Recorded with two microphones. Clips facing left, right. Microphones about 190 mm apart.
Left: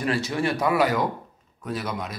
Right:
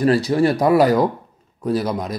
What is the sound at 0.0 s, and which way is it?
Speech, 40° right (ahead or behind).